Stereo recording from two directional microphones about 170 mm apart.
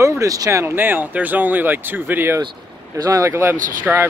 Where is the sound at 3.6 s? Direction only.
55° right (ahead or behind).